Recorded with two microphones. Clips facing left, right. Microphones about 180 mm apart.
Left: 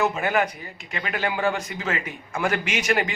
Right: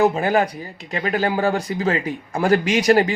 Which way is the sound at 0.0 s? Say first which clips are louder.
Right 5 dB; 35° right (ahead or behind).